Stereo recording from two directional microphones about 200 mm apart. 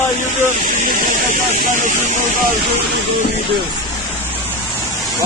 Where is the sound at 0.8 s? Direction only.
40° right (ahead or behind).